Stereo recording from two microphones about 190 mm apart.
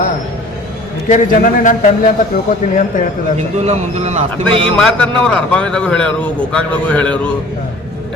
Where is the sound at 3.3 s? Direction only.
35° right (ahead or behind).